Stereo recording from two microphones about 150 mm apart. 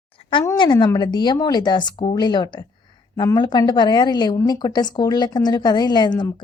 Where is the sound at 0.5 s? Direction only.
30° left (ahead or behind).